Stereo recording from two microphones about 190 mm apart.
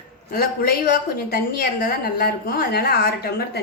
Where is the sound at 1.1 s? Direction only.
50° left (ahead or behind).